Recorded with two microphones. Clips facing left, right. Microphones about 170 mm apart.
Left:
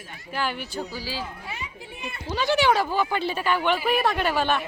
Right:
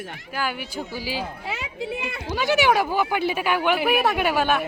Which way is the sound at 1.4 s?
90° right.